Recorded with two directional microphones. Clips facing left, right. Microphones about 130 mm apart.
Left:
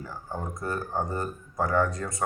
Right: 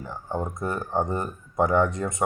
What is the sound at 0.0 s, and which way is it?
Speech, 20° right (ahead or behind).